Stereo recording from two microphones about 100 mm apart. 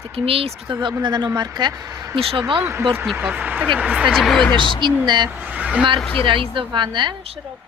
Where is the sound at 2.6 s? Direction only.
25° right (ahead or behind).